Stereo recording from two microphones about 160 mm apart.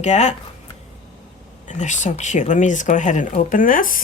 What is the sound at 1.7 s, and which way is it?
Speech, 50° left (ahead or behind).